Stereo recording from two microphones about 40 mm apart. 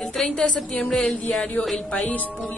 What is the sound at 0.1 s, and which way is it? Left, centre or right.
Music, centre.